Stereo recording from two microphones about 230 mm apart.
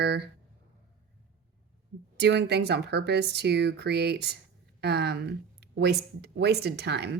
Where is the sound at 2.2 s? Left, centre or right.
Right.